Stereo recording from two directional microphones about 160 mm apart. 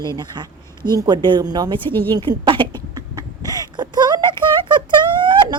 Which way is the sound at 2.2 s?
30° right (ahead or behind).